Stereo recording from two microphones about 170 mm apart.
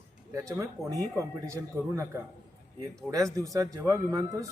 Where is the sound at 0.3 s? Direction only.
20° right (ahead or behind).